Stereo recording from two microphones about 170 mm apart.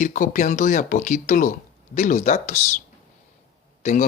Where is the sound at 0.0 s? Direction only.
50° left (ahead or behind).